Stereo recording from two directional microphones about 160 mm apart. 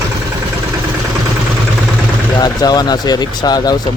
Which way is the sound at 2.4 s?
25° left (ahead or behind).